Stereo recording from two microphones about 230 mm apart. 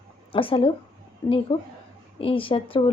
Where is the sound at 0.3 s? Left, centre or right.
Left.